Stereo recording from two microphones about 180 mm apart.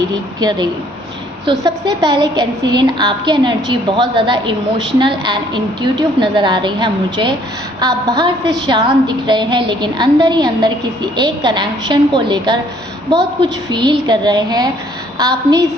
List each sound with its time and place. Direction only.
0.1 s a woman's voice: 20° right (ahead or behind)